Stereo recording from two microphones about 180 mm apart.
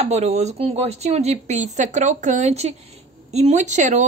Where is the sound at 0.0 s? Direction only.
40° right (ahead or behind).